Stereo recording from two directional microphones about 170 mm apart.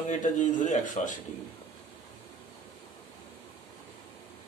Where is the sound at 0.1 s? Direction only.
50° left (ahead or behind).